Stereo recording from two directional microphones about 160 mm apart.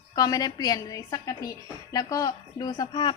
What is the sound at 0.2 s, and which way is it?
A woman's voice, 25° left (ahead or behind).